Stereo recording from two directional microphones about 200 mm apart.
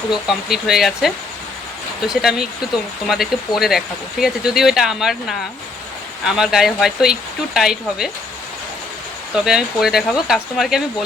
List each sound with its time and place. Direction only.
0.3 s speech: centre (ahead or behind)
9.3 s speech: 5° right (ahead or behind)